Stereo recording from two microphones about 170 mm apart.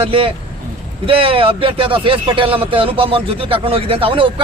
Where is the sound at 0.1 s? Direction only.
30° right (ahead or behind).